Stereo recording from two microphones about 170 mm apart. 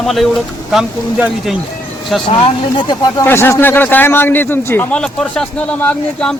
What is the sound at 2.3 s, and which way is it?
Speech, 35° left (ahead or behind).